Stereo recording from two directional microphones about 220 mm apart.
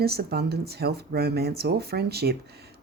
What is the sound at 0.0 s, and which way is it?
Speech, 45° right (ahead or behind).